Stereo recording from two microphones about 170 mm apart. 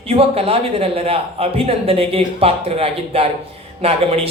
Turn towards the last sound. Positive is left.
turn(degrees=-35)  # may be behind; listen again after turning